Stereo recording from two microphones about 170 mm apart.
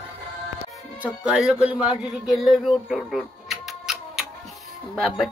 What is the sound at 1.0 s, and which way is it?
A man's voice, 5° right (ahead or behind).